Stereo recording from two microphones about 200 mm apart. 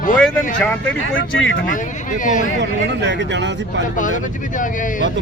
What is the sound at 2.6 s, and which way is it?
Speech, 60° right (ahead or behind).